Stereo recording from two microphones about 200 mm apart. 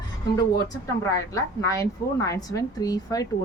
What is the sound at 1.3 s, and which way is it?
A woman's voice, 15° left (ahead or behind).